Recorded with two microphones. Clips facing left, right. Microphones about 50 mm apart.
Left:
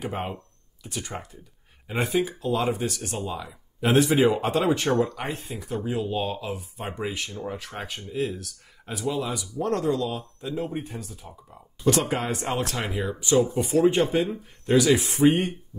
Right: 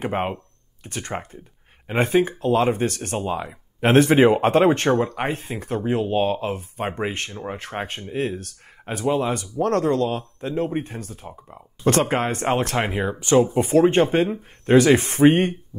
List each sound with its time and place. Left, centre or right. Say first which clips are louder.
0.0 s speech: right 6 dB; right